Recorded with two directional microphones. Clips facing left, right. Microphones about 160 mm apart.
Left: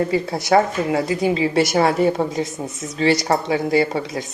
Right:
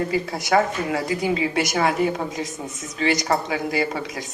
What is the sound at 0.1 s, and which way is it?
A woman's voice, 25° left (ahead or behind).